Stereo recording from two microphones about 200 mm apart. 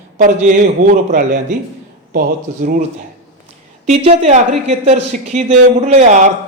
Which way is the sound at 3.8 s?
35° right (ahead or behind).